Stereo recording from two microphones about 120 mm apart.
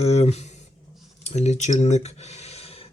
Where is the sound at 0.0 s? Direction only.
60° left (ahead or behind).